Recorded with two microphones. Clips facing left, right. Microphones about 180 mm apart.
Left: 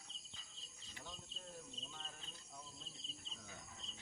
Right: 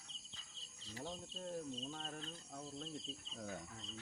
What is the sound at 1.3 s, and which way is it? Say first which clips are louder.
Speech: right 10 dB; 45° right (ahead or behind).